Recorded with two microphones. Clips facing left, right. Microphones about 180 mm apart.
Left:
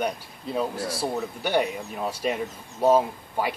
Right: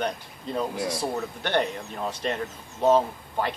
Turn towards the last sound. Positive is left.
turn(degrees=10)  # may be behind; listen again after turning